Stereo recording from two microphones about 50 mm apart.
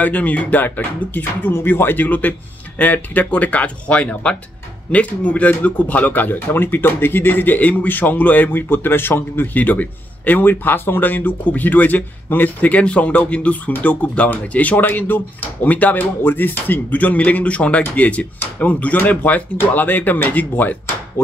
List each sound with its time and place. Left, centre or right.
0.0 s a man's voice: left
1.5 s a man's voice: left
10.4 s a man's voice: left
12.7 s a man's voice: left